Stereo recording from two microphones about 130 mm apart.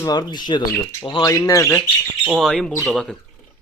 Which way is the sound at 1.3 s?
25° left (ahead or behind).